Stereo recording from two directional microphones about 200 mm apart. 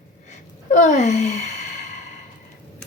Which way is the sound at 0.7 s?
40° left (ahead or behind).